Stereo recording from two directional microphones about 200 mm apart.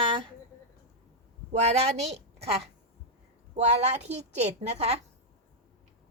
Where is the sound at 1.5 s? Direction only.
35° right (ahead or behind).